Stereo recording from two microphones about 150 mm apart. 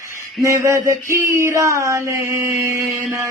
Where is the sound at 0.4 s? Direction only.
20° right (ahead or behind).